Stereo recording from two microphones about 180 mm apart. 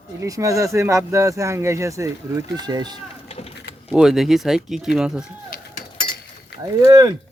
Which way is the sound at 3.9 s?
Centre (ahead or behind).